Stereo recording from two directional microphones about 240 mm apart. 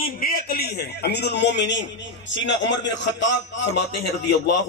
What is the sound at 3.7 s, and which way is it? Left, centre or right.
Speech, left.